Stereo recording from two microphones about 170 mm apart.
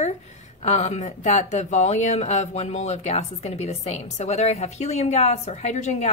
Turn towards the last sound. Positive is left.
turn(degrees=45)  # may be behind; listen again after turning